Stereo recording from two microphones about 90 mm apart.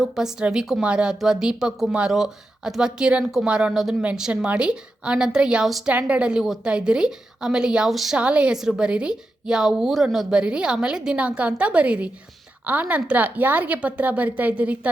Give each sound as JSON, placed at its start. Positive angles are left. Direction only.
{"t": 0.0, "sound": "a woman's voice", "side_deg": -5}